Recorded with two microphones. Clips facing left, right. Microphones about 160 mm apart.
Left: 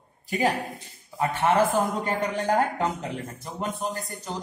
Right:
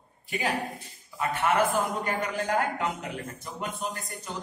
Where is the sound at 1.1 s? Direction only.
30° left (ahead or behind).